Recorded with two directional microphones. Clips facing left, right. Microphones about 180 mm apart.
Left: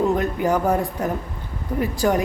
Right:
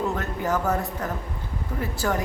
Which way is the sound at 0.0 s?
15° left (ahead or behind).